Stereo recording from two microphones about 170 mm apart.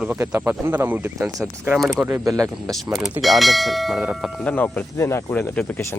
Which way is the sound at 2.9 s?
Centre (ahead or behind).